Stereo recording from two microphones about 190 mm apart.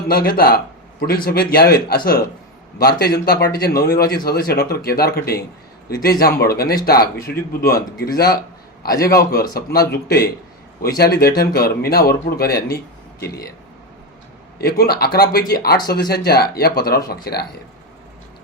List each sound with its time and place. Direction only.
0.1 s a man's voice: 50° left (ahead or behind)
14.6 s speech: 55° left (ahead or behind)